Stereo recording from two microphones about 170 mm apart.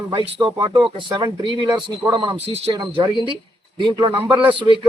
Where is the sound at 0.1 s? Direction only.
30° right (ahead or behind).